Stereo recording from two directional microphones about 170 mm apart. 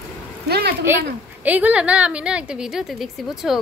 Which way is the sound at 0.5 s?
70° right (ahead or behind).